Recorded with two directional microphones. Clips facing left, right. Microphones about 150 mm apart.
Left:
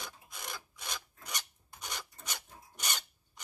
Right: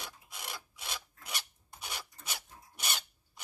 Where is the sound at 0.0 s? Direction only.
5° right (ahead or behind).